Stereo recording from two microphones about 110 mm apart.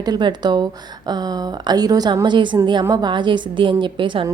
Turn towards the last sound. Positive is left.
turn(degrees=-50)  # may be behind; listen again after turning